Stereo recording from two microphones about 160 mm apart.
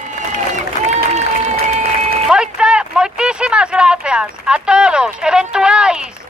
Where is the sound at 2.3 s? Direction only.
5° right (ahead or behind).